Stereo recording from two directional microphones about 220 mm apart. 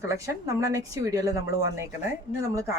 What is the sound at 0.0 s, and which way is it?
Speech, 15° right (ahead or behind).